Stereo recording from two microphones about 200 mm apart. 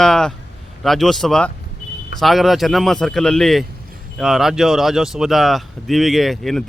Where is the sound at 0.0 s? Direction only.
5° left (ahead or behind).